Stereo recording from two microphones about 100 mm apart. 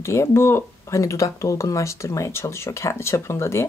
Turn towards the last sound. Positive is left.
turn(degrees=25)  # may be behind; listen again after turning